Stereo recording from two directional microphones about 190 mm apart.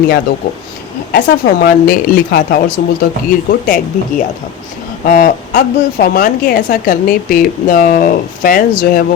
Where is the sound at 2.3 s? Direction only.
50° left (ahead or behind).